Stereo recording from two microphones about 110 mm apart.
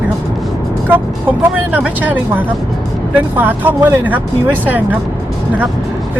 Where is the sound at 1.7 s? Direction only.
15° right (ahead or behind).